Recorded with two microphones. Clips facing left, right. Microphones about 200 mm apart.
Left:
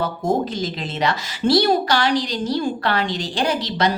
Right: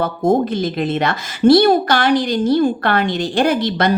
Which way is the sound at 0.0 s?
55° right (ahead or behind).